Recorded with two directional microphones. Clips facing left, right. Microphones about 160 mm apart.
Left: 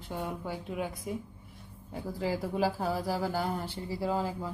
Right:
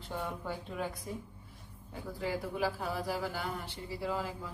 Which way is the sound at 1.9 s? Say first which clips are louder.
Left 4 dB; 30° left (ahead or behind).